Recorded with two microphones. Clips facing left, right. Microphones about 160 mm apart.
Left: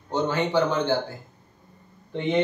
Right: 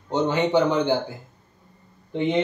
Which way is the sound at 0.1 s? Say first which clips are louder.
Right 3 dB; 20° right (ahead or behind).